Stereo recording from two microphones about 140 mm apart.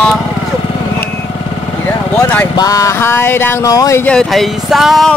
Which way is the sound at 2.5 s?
25° left (ahead or behind).